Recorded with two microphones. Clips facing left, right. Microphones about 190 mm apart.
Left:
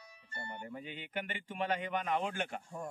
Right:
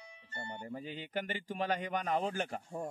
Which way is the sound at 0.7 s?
35° right (ahead or behind).